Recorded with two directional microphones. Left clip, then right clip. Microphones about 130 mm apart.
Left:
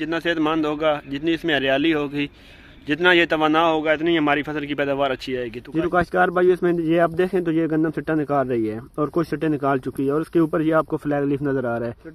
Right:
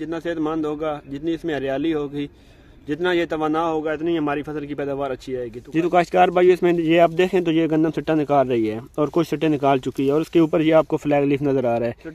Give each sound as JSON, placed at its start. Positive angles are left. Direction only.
{"t": 0.0, "sound": "a man's voice", "side_deg": 15}
{"t": 5.8, "sound": "speech", "side_deg": -15}